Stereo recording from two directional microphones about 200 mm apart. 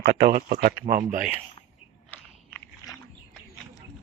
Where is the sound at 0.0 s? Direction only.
45° right (ahead or behind).